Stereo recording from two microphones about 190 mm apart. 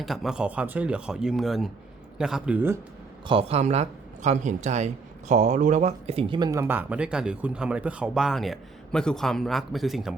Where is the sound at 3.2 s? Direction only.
30° right (ahead or behind).